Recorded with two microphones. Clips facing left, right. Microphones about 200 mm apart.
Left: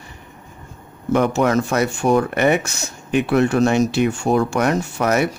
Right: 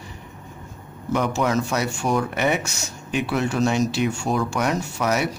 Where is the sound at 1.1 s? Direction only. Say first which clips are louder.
Left 5 dB; 55° left (ahead or behind).